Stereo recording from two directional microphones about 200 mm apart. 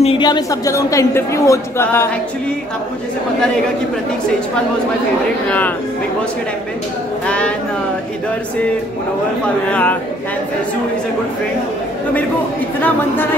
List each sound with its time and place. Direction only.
0.0 s speech: 25° left (ahead or behind)
7.2 s a sound: 5° left (ahead or behind)
9.7 s speech: 5° left (ahead or behind)
12.8 s speech: 10° left (ahead or behind)